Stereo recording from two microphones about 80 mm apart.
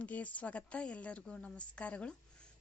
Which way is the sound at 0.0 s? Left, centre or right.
Centre.